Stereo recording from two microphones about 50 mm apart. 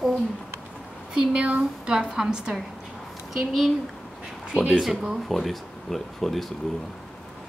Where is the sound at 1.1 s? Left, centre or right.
Centre.